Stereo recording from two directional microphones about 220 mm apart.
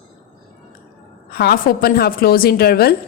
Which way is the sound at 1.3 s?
45° left (ahead or behind).